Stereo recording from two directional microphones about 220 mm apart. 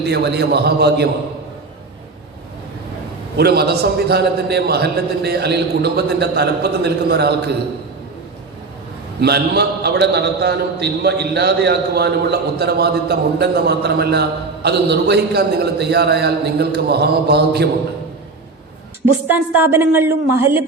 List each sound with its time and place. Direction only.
0.0 s a man's voice: 50° right (ahead or behind)
3.3 s a man's voice: 45° right (ahead or behind)
9.2 s a man's voice: 45° right (ahead or behind)
19.3 s a woman's voice: 10° right (ahead or behind)